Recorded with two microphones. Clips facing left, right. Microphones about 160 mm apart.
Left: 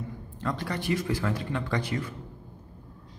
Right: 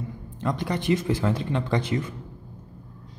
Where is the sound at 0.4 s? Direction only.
20° right (ahead or behind).